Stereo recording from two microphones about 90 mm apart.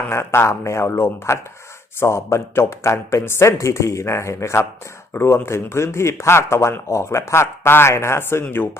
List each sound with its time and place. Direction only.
0.1 s speech: 30° left (ahead or behind)